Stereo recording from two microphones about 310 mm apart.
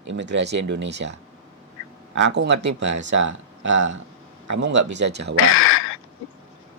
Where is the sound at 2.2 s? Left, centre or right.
Right.